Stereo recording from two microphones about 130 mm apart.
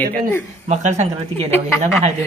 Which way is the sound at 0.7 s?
60° right (ahead or behind).